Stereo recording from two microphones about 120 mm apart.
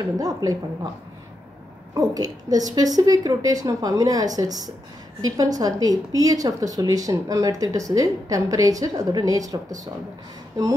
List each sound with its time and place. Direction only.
0.0 s a woman's voice: 30° right (ahead or behind)
2.0 s a woman's voice: 30° right (ahead or behind)